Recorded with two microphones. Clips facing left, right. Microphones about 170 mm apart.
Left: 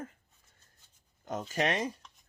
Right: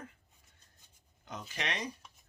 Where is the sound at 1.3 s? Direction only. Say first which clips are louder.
Left 9 dB; 45° left (ahead or behind).